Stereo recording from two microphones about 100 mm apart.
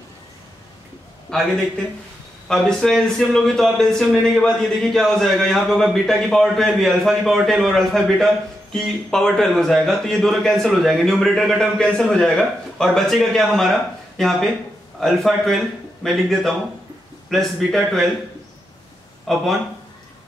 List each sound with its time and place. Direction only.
1.3 s a man's voice: 5° left (ahead or behind)
19.3 s a man's voice: 5° left (ahead or behind)